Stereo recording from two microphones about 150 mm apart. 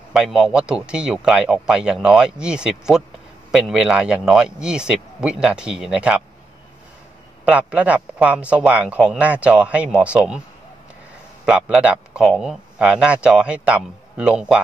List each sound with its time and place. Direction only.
0.1 s speech: 5° right (ahead or behind)
7.4 s speech: 10° right (ahead or behind)
11.4 s speech: 5° right (ahead or behind)